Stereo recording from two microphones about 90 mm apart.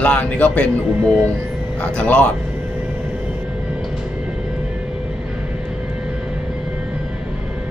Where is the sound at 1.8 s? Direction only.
15° left (ahead or behind).